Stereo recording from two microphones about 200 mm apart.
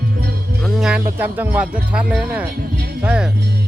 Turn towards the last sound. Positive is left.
turn(degrees=-5)  # may be behind; listen again after turning